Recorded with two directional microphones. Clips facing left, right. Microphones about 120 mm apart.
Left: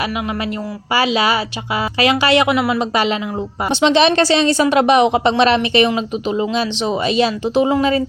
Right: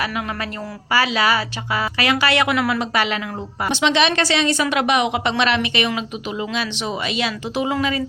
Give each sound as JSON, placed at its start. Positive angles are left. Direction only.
{"t": 0.9, "sound": "a woman's voice", "side_deg": 20}